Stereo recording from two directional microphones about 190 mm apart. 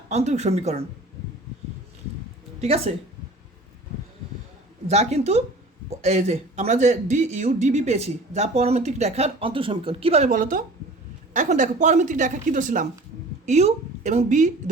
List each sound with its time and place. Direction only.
0.1 s speech: 35° right (ahead or behind)
2.6 s speech: 35° right (ahead or behind)
4.9 s a woman's voice: 35° right (ahead or behind)